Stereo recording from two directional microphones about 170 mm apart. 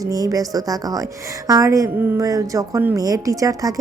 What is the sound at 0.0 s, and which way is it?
A woman's voice, 20° right (ahead or behind).